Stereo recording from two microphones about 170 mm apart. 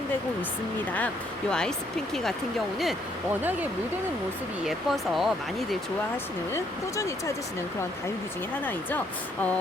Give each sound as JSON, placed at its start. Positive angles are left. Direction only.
{"t": 0.9, "sound": "speech", "side_deg": 5}
{"t": 4.6, "sound": "speech", "side_deg": 0}
{"t": 6.5, "sound": "speech", "side_deg": 20}